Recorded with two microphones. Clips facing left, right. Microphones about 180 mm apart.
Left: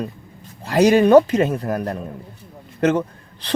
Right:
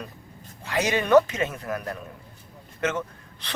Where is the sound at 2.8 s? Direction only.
35° left (ahead or behind).